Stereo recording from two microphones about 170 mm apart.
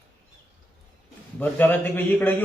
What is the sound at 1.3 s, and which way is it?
A man's voice, 10° left (ahead or behind).